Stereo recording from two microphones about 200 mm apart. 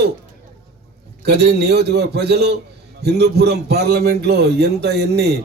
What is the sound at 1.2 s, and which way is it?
A man's voice, 55° right (ahead or behind).